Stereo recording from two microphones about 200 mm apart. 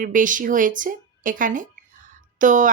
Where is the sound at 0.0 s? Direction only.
40° right (ahead or behind).